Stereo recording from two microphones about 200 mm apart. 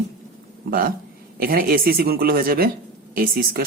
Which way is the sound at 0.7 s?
45° right (ahead or behind).